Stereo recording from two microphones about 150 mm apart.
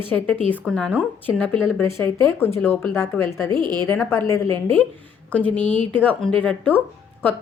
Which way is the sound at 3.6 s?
25° right (ahead or behind).